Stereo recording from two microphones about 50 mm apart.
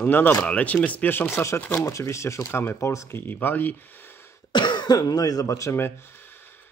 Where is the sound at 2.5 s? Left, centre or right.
Left.